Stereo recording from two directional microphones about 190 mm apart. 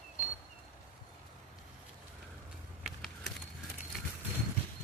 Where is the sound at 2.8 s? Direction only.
Centre (ahead or behind).